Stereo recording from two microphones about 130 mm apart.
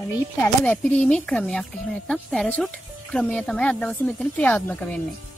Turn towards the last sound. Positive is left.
turn(degrees=10)  # may be behind; listen again after turning